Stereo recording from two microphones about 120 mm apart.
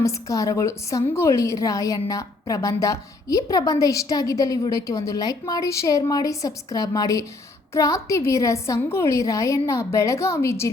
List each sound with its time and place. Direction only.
0.0 s a woman's voice: 30° left (ahead or behind)